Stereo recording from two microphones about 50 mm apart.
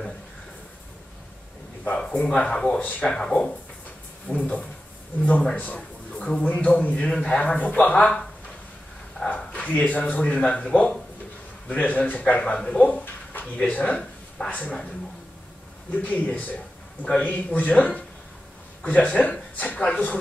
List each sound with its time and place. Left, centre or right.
2.1 s a man's voice: left
4.3 s a man's voice: left
9.5 s a man's voice: left
13.0 s a sound: left
14.5 s a man's voice: left
15.9 s a man's voice: left